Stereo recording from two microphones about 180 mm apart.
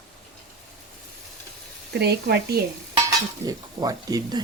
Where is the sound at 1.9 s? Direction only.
65° right (ahead or behind).